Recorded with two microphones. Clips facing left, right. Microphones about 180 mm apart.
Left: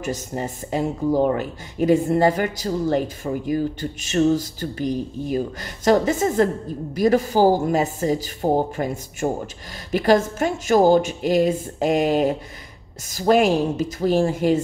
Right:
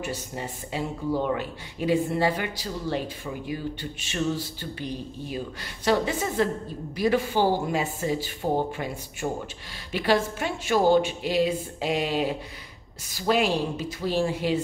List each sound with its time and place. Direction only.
0.0 s speech: 45° left (ahead or behind)